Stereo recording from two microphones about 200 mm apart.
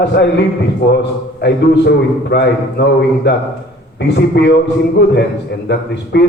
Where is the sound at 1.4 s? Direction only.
60° left (ahead or behind).